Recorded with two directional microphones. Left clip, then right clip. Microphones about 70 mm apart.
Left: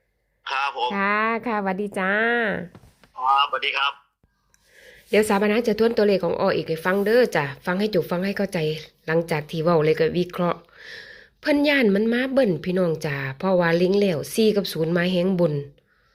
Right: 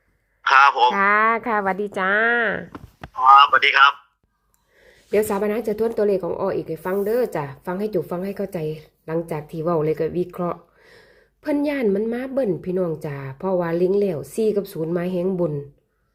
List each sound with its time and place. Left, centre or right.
0.4 s a sound: centre
0.9 s a woman's voice: left
3.2 s a sound: centre
4.9 s a woman's voice: centre
10.3 s a woman's voice: centre
10.8 s a woman's voice: right